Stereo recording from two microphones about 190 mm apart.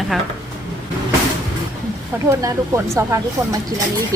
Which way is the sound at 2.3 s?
15° right (ahead or behind).